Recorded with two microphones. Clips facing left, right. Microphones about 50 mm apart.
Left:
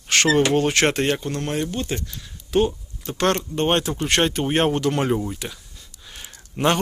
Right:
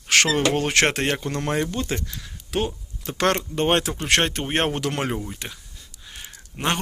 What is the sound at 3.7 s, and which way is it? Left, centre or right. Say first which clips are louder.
Speech: right 1 dB; right.